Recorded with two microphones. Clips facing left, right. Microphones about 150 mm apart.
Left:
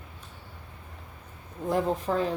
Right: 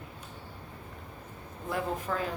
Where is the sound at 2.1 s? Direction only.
30° left (ahead or behind).